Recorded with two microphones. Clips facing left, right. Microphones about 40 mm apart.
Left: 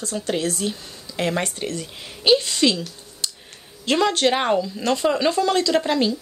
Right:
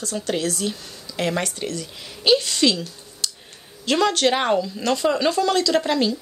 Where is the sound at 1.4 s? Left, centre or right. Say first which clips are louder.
Even; left.